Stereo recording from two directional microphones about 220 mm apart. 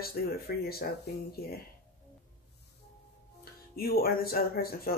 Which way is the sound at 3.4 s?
45° left (ahead or behind).